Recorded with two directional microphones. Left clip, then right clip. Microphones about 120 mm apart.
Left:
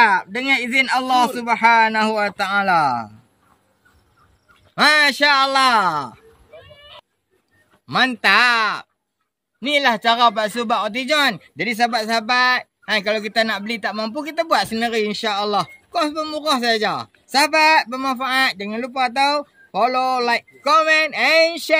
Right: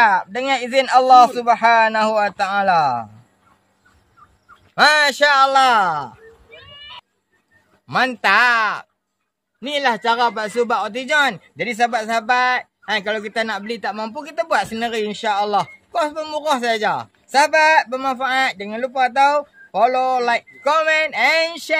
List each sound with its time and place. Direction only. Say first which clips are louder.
0.0 s a man's voice: even; 35° right (ahead or behind)
4.7 s speech: right 1 dB; 50° right (ahead or behind)
5.5 s speech: right 1 dB; 30° right (ahead or behind)
7.8 s speech: even; 25° right (ahead or behind)